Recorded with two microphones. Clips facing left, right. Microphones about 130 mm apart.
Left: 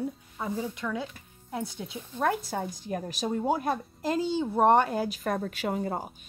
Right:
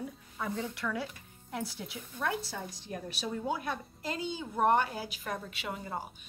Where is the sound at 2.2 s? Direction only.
50° left (ahead or behind).